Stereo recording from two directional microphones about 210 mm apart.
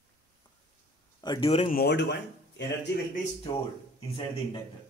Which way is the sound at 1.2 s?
25° left (ahead or behind).